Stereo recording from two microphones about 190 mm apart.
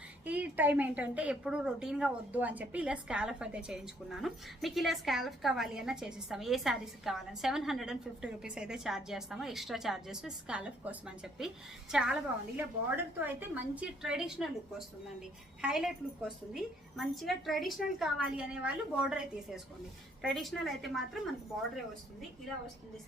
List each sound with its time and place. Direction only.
0.3 s speech: 10° right (ahead or behind)
13.1 s speech: 10° right (ahead or behind)